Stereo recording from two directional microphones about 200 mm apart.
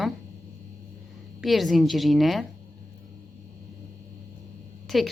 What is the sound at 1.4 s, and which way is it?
A woman's voice, centre (ahead or behind).